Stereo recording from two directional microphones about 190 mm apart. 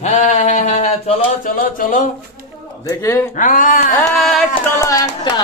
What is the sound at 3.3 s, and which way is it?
Speech, 40° left (ahead or behind).